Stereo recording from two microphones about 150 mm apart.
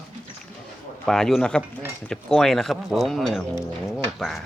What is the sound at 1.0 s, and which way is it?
Speech, 5° left (ahead or behind).